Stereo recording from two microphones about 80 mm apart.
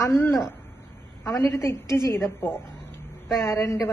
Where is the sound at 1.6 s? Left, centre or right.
Left.